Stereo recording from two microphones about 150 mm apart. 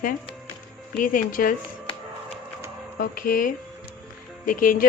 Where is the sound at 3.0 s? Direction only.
70° left (ahead or behind).